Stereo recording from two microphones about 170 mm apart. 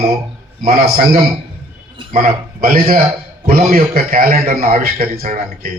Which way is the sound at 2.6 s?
60° right (ahead or behind).